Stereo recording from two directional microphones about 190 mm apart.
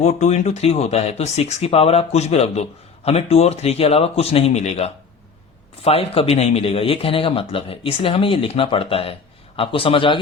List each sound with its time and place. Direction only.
0.0 s speech: 35° left (ahead or behind)